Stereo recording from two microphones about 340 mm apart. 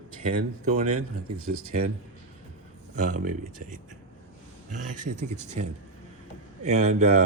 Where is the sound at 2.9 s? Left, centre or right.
Right.